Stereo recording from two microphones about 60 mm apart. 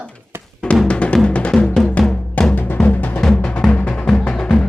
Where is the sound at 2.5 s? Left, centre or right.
Left.